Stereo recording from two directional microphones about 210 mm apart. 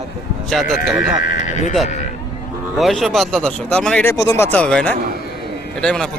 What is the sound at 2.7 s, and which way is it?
Speech, centre (ahead or behind).